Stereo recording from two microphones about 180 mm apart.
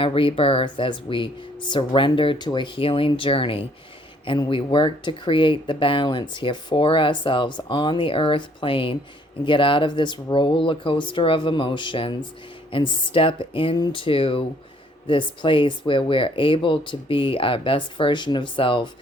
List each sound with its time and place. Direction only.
0.0 s speech: 30° left (ahead or behind)